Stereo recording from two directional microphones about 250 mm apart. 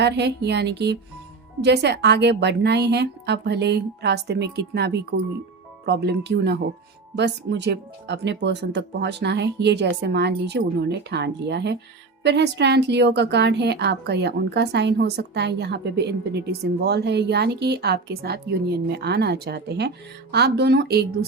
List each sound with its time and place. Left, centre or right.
0.0 s speech: right